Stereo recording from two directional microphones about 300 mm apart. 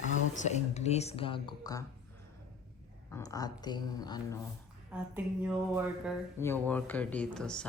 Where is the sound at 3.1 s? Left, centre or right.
Centre.